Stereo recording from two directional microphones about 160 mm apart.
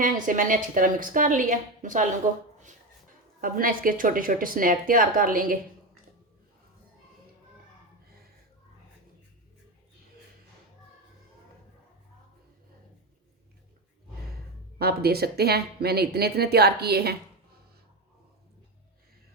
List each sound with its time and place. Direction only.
0.0 s a woman's voice: 55° right (ahead or behind)
3.4 s a woman's voice: 60° right (ahead or behind)
14.8 s speech: 80° right